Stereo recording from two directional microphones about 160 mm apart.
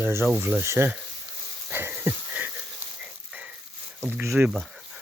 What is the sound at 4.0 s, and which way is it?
Speech, 15° right (ahead or behind).